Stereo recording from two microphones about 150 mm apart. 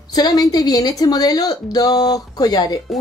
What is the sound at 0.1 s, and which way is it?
A woman's voice, 25° left (ahead or behind).